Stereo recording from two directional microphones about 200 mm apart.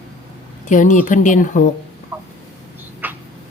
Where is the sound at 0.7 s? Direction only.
40° left (ahead or behind).